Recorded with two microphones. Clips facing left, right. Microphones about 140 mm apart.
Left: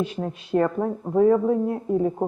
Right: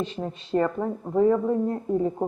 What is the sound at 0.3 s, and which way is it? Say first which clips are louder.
Speech: left 1 dB; 10° left (ahead or behind).